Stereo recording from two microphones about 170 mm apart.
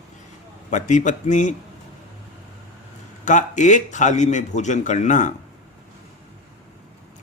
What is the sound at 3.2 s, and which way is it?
A man's voice, 45° left (ahead or behind).